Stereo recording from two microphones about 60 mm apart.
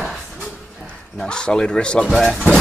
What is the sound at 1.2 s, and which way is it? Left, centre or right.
Speech, centre.